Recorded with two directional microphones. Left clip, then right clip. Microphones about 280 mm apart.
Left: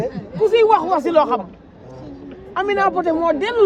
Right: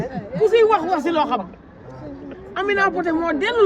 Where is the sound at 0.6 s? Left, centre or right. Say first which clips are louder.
Left 2 dB; left.